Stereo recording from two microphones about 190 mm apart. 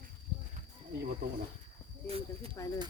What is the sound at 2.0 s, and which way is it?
Speech, 30° right (ahead or behind).